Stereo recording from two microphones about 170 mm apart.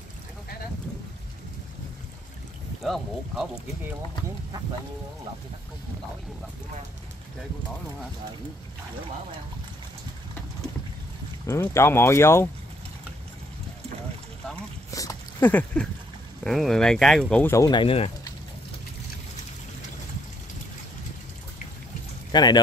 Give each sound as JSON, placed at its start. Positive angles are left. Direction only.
{"t": 2.8, "sound": "speech", "side_deg": 0}
{"t": 11.4, "sound": "speech", "side_deg": 15}
{"t": 14.9, "sound": "speech", "side_deg": 20}
{"t": 17.3, "sound": "speech", "side_deg": 15}
{"t": 22.3, "sound": "speech", "side_deg": 25}